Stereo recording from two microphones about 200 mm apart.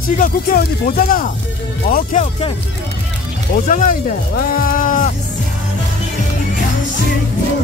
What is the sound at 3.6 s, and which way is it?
Speech, 40° left (ahead or behind).